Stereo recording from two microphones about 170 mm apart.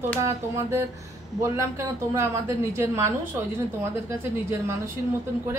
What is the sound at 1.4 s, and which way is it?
A woman's voice, 15° right (ahead or behind).